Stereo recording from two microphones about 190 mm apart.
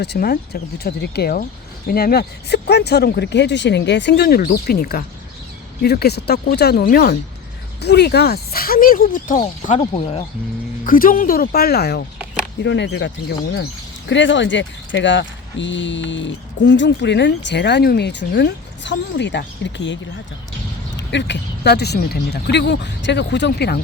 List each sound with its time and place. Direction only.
0.0 s speech: 55° left (ahead or behind)
9.9 s speech: 30° left (ahead or behind)
10.8 s speech: 45° left (ahead or behind); by 13.1 s 65° left (ahead or behind)
14.1 s speech: 75° left (ahead or behind); by 23.8 s 60° left (ahead or behind)